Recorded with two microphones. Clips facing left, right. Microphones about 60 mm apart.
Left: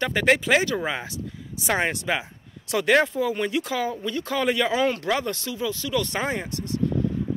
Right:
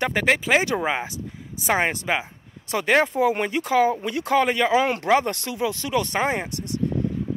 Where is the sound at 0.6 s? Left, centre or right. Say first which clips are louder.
Right 2 dB; right.